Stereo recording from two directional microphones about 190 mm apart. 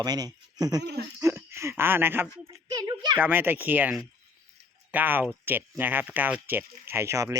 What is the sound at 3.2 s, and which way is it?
Speech, 10° right (ahead or behind).